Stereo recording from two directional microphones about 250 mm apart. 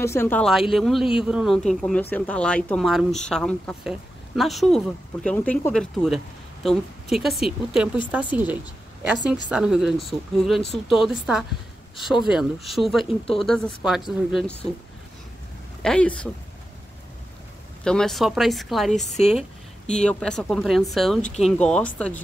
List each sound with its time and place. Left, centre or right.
0.0 s speech: centre
15.8 s speech: centre
17.8 s speech: centre
19.0 s speech: left
19.9 s speech: centre